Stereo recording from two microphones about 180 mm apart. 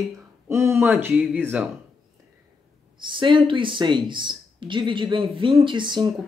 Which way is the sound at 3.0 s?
25° right (ahead or behind).